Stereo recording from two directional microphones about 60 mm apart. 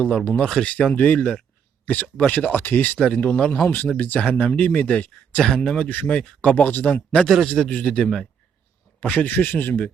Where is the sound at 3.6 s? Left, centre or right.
Left.